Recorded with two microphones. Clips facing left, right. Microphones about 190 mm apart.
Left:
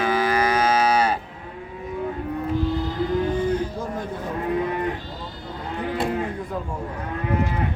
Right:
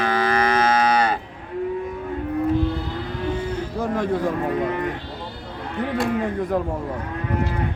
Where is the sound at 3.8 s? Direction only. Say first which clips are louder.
Right 7 dB; 80° right.